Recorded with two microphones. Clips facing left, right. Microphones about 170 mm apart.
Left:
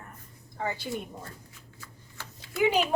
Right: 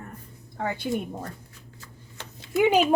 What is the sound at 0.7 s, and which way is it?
Speech, 55° right (ahead or behind).